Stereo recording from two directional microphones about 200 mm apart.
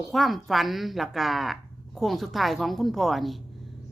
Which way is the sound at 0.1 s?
Centre (ahead or behind).